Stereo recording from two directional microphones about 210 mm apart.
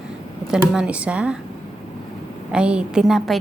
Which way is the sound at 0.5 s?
5° right (ahead or behind).